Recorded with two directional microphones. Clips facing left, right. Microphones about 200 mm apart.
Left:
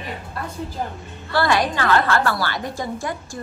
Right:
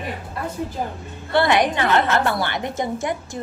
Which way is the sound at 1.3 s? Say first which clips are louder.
Right 2 dB; 20° right (ahead or behind).